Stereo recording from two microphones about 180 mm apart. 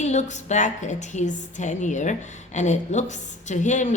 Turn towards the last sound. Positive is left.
turn(degrees=40)  # may be behind; listen again after turning